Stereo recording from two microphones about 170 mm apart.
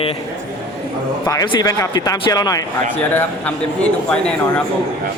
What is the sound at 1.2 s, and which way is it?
Speech, 20° left (ahead or behind).